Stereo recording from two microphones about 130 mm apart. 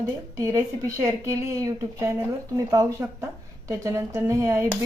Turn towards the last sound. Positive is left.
turn(degrees=-25)  # may be behind; listen again after turning